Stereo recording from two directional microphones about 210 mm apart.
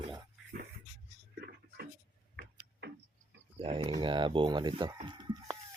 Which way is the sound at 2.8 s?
50° right (ahead or behind).